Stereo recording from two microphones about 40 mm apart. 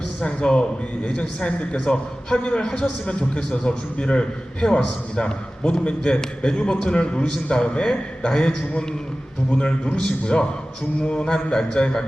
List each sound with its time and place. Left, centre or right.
0.2 s a man's voice: left
7.9 s a man's voice: centre